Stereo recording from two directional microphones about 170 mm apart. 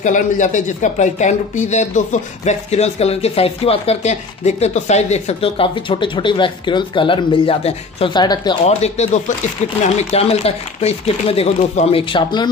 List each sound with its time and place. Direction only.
0.0 s speech: 45° left (ahead or behind); by 8.5 s 25° left (ahead or behind)
8.6 s speech: 40° left (ahead or behind)